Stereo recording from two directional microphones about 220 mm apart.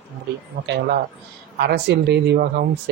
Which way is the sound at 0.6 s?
50° right (ahead or behind).